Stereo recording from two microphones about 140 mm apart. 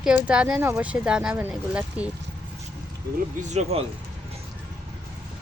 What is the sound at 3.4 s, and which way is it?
Speech, 55° right (ahead or behind).